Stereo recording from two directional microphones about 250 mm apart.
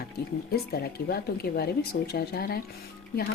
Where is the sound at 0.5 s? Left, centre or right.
Left.